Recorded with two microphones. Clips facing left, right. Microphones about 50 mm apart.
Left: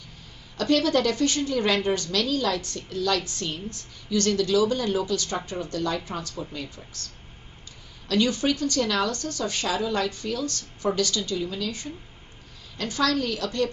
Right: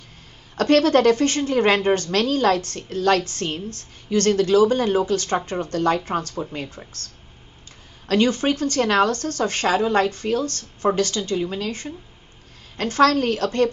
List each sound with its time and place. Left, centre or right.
0.6 s a woman's voice: right
8.1 s a woman's voice: right